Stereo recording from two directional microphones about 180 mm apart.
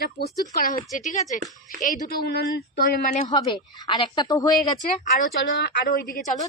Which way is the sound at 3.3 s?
25° left (ahead or behind).